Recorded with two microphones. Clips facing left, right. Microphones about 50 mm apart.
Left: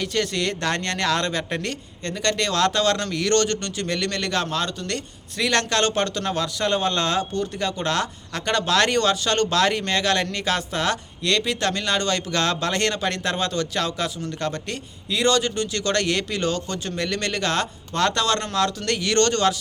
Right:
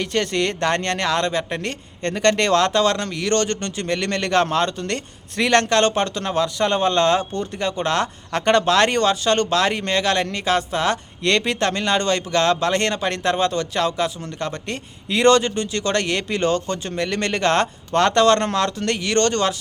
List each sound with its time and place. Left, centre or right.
0.0 s speech: right
1.0 s speech: centre
2.0 s speech: right
2.6 s a man's voice: right
8.3 s a man's voice: right; by 10.9 s centre
11.2 s a man's voice: right
15.1 s a man's voice: right